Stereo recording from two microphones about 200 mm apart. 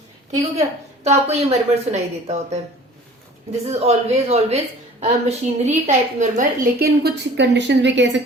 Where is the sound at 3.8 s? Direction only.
30° right (ahead or behind); by 8.2 s 60° right (ahead or behind).